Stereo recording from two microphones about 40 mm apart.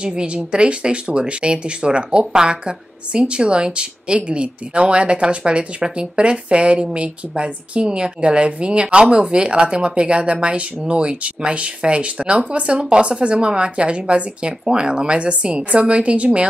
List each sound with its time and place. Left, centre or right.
0.0 s a woman's voice: right